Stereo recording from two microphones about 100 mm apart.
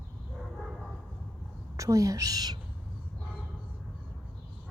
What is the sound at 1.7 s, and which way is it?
Speech, 35° right (ahead or behind).